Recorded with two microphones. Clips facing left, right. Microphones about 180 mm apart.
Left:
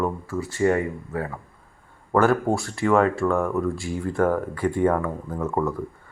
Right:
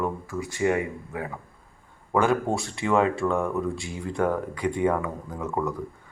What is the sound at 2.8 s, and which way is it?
Speech, 15° right (ahead or behind).